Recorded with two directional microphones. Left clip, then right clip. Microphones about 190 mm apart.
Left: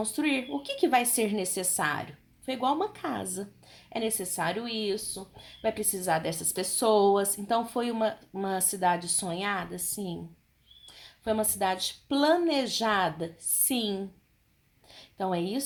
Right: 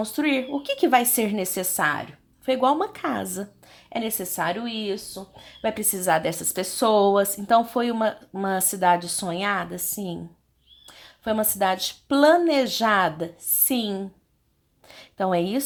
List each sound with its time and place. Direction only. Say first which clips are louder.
0.0 s a woman's voice: right 5 dB; 20° right (ahead or behind)
5.6 s a woman's voice: right 5 dB; 30° right (ahead or behind)
14.8 s a sound: right 7 dB; 25° right (ahead or behind)